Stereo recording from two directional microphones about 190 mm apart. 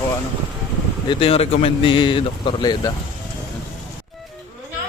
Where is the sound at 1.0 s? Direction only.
30° left (ahead or behind).